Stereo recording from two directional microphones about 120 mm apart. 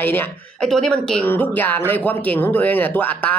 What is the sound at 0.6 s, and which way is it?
Speech, 5° left (ahead or behind).